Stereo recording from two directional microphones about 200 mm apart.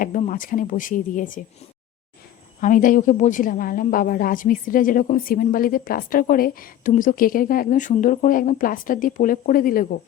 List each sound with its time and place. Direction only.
0.0 s speech: 40° left (ahead or behind)
2.6 s a woman's voice: 40° left (ahead or behind)